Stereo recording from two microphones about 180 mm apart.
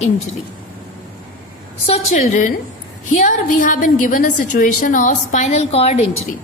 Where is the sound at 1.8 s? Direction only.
35° left (ahead or behind).